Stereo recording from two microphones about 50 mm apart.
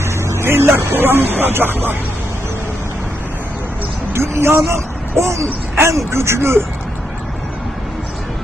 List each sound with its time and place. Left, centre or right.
0.3 s speech: right
4.1 s speech: right
5.7 s speech: right